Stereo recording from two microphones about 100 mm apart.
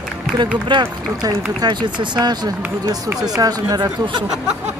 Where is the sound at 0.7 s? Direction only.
50° right (ahead or behind).